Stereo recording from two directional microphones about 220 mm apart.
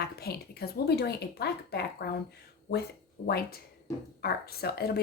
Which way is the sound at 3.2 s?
45° left (ahead or behind).